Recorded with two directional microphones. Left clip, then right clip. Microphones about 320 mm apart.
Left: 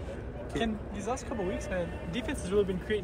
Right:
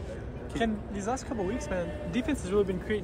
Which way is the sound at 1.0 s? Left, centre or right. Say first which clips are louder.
Right 2 dB; right.